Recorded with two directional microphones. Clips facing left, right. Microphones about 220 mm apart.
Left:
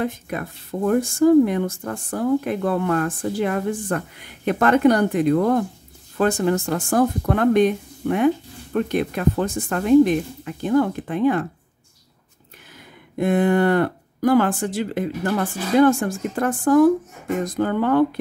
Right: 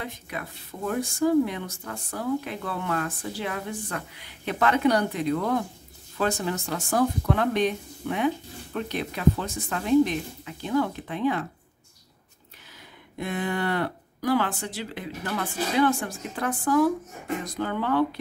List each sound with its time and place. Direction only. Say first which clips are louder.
0.0 s speech: left 10 dB; 50° left (ahead or behind)
13.2 s speech: left 11 dB; 50° left (ahead or behind)